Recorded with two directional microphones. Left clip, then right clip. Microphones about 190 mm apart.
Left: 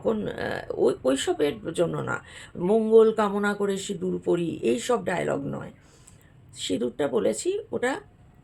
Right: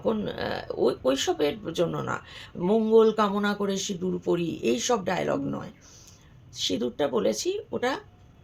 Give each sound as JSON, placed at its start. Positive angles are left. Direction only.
{"t": 0.0, "sound": "speech", "side_deg": 10}